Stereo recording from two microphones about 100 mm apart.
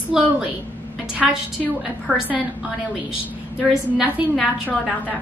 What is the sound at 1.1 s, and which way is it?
A woman's voice, 10° right (ahead or behind).